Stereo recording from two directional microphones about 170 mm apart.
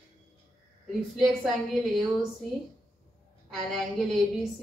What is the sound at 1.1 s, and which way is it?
Speech, centre (ahead or behind).